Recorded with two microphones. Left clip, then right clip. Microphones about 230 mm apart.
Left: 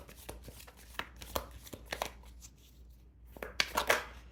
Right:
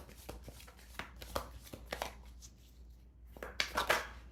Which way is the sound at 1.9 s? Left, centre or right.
Left.